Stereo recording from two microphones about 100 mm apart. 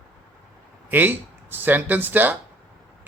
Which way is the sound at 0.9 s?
20° right (ahead or behind).